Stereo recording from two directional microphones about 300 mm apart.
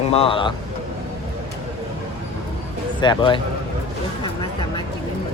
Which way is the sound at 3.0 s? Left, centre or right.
Centre.